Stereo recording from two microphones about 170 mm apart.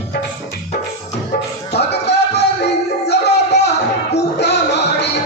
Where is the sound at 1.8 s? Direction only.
85° left.